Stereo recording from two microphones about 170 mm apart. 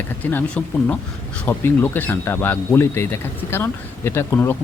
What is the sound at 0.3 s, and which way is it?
Speech, 10° left (ahead or behind).